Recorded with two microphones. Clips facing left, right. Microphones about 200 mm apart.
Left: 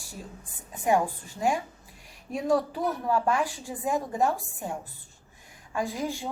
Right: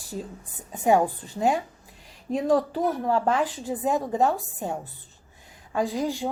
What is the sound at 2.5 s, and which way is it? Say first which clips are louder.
Speech: right 2 dB; 40° right (ahead or behind).